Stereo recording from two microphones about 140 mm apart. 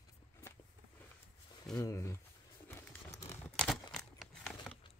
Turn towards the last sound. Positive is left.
turn(degrees=5)  # may be behind; listen again after turning